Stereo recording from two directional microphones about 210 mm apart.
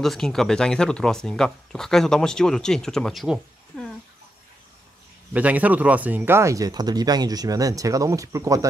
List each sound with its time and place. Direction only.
0.0 s speech: centre (ahead or behind)
5.3 s speech: 5° right (ahead or behind)